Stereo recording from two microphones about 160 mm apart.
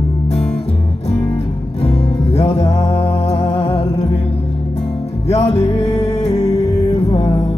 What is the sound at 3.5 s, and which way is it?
Music, 40° left (ahead or behind).